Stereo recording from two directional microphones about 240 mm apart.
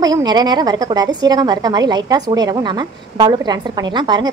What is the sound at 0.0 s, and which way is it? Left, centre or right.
A woman's voice, centre.